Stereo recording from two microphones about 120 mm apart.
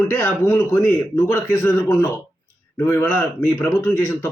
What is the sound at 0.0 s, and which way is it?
Speech, 20° left (ahead or behind).